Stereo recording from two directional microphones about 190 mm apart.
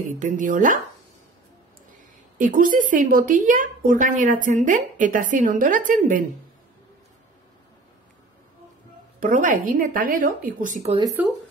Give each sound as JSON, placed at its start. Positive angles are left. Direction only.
{"t": 0.2, "sound": "a woman's voice", "side_deg": -45}
{"t": 2.3, "sound": "a woman's voice", "side_deg": -45}
{"t": 9.2, "sound": "a woman's voice", "side_deg": -45}